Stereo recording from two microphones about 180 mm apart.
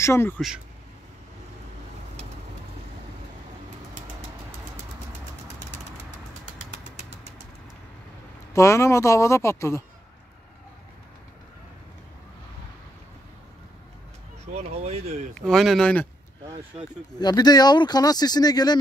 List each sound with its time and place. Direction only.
0.0 s speech: 15° left (ahead or behind)
8.5 s speech: 15° left (ahead or behind)
14.5 s speech: 35° right (ahead or behind)
15.3 s speech: centre (ahead or behind)
17.2 s speech: 20° left (ahead or behind)